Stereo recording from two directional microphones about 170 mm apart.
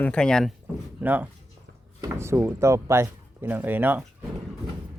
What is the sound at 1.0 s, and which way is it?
Speech, 10° right (ahead or behind).